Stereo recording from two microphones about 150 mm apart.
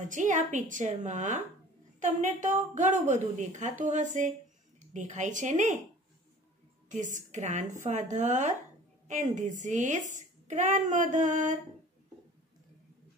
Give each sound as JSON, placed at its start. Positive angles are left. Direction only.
{"t": 0.0, "sound": "a woman's voice", "side_deg": -55}
{"t": 6.9, "sound": "a woman's voice", "side_deg": -55}